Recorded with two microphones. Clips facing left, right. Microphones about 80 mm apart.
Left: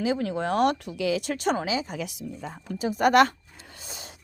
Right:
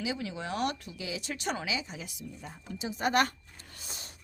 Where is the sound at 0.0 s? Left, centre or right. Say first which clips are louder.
Left 9 dB; left.